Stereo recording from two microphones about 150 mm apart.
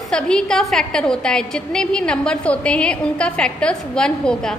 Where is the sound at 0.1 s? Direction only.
5° left (ahead or behind).